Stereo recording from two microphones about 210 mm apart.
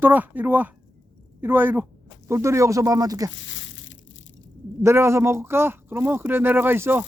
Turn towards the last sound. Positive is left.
turn(degrees=-10)  # may be behind; listen again after turning